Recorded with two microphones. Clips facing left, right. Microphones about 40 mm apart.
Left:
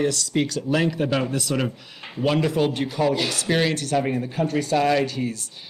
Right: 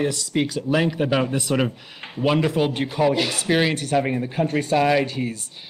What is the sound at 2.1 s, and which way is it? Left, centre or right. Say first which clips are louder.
Speech: right 1 dB; centre.